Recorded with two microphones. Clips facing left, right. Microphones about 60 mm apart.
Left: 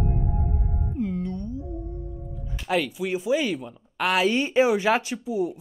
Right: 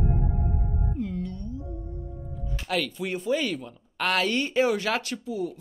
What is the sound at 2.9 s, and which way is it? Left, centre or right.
Speech, centre.